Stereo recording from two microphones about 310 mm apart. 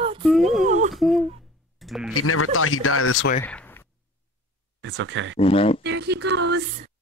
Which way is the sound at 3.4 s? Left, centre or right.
Centre.